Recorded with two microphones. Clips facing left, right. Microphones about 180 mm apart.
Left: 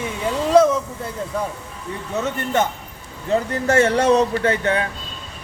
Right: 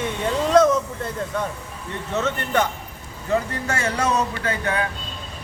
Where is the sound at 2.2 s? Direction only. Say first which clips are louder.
Left 1 dB; 20° left (ahead or behind).